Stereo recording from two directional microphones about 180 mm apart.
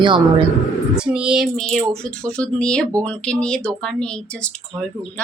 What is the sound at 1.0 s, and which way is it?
Speech, 5° right (ahead or behind).